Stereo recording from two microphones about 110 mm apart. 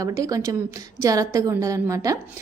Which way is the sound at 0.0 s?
35° right (ahead or behind).